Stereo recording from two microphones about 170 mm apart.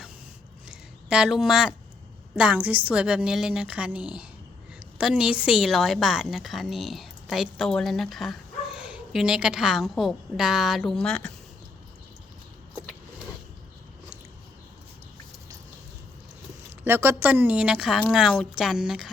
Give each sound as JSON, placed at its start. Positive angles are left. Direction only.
{"t": 0.7, "sound": "a sound", "side_deg": -5}
{"t": 2.3, "sound": "a woman's voice", "side_deg": -5}
{"t": 16.8, "sound": "a woman's voice", "side_deg": -15}